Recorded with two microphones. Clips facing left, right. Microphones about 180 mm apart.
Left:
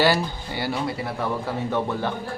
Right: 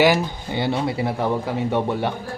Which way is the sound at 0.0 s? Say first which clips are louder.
Right 3 dB; 20° right (ahead or behind).